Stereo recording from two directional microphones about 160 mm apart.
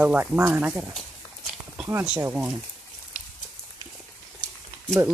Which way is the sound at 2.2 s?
10° right (ahead or behind).